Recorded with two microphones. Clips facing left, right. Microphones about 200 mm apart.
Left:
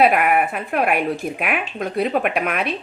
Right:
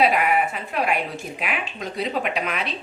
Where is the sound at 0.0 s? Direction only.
55° left (ahead or behind).